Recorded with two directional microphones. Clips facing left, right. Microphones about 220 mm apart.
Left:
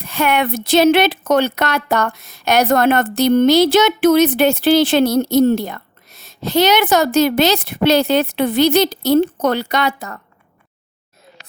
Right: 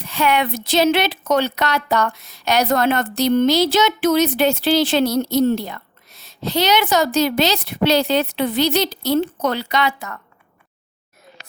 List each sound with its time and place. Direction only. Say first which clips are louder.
0.0 s speech: left 2 dB; 50° left (ahead or behind)